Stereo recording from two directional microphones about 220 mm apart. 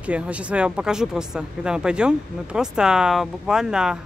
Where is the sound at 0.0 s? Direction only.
5° right (ahead or behind).